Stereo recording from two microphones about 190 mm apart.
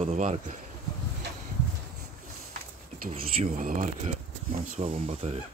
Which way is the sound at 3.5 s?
45° right (ahead or behind).